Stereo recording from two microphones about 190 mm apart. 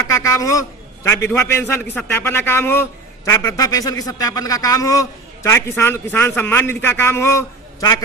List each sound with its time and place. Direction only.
0.1 s a man's voice: 15° left (ahead or behind)